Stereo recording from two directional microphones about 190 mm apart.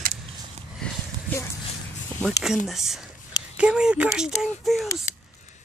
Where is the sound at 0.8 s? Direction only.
10° left (ahead or behind).